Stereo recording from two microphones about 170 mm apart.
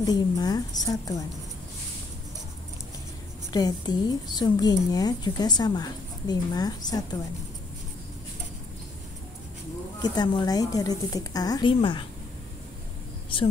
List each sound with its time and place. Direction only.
0.0 s a woman's voice: 20° left (ahead or behind)
3.5 s a woman's voice: 25° left (ahead or behind)
10.0 s a woman's voice: 25° left (ahead or behind)
13.3 s speech: 30° left (ahead or behind)